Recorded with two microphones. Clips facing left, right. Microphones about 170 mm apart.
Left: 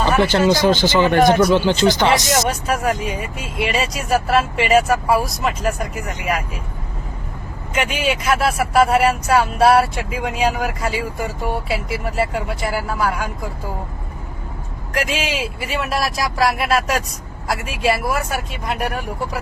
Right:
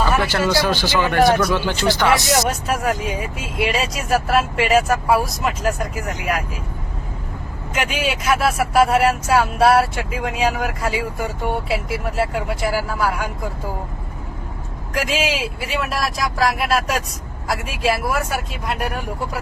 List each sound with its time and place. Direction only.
0.6 s speech: 20° left (ahead or behind)
2.1 s speech: centre (ahead or behind)
7.8 s speech: centre (ahead or behind)
14.9 s speech: centre (ahead or behind)